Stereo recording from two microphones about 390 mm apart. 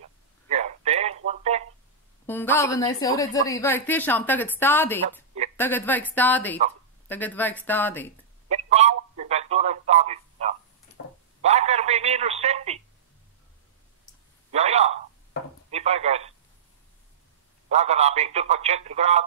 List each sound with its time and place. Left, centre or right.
0.5 s a sound: centre
2.2 s a woman's voice: centre
8.5 s telephone: centre
14.5 s a sound: centre
15.7 s telephone: centre
17.6 s a man's voice: centre